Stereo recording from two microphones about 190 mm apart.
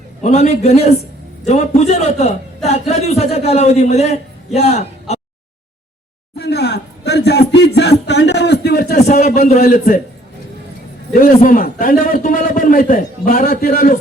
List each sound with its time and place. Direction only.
0.2 s a man's voice: 35° left (ahead or behind)
6.3 s a sound: 60° left (ahead or behind)
9.0 s a man's voice: 40° left (ahead or behind)
11.2 s a man's voice: 45° left (ahead or behind)